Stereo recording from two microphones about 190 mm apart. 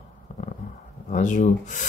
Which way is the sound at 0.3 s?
45° left (ahead or behind).